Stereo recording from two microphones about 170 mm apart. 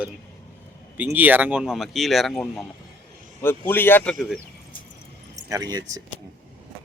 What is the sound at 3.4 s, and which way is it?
Speech, 15° left (ahead or behind).